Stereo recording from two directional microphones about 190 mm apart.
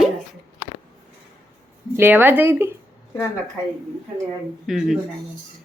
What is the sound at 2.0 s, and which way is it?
Speech, 10° right (ahead or behind).